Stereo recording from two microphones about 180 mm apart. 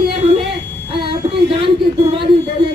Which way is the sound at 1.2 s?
30° right (ahead or behind).